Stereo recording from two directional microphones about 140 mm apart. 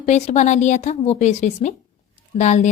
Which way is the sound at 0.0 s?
55° left (ahead or behind).